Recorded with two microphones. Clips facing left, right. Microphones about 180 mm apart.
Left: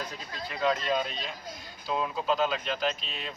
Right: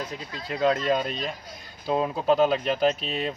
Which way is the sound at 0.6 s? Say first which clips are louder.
Right 5 dB; 40° right (ahead or behind).